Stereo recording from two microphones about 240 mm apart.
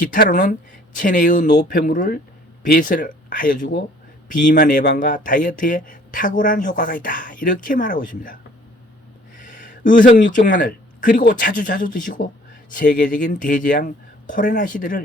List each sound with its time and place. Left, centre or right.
0.1 s speech: left
9.4 s speech: left